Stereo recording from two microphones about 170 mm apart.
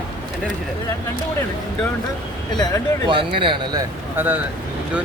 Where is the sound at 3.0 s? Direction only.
30° right (ahead or behind).